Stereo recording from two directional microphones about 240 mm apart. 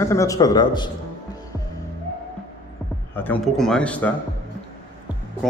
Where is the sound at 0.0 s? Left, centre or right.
Centre.